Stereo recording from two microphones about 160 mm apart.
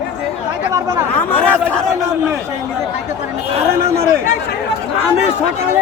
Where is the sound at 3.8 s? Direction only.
15° right (ahead or behind).